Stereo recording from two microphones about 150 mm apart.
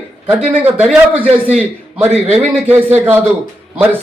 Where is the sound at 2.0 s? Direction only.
45° right (ahead or behind).